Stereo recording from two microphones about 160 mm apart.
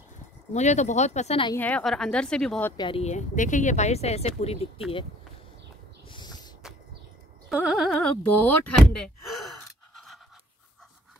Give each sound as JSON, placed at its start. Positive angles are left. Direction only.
{"t": 0.5, "sound": "speech", "side_deg": 45}
{"t": 1.5, "sound": "a woman's voice", "side_deg": 10}
{"t": 2.8, "sound": "speech", "side_deg": 35}
{"t": 6.0, "sound": "a sound", "side_deg": 25}
{"t": 7.4, "sound": "speech", "side_deg": 0}